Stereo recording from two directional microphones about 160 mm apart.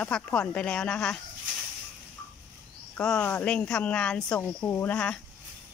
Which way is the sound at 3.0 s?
10° left (ahead or behind).